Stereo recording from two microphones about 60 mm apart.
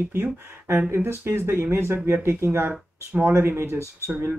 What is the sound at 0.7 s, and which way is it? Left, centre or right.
Speech, right.